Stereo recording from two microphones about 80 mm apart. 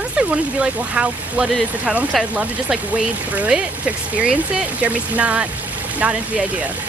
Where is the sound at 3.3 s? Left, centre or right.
Centre.